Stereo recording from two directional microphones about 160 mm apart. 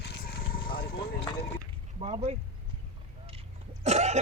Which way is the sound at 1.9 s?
40° right (ahead or behind).